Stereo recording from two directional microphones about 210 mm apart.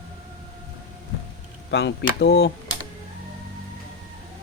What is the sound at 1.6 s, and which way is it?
Speech, 55° left (ahead or behind).